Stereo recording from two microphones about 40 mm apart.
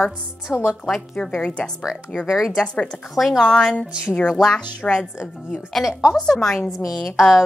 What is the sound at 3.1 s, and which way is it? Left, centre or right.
Speech, centre.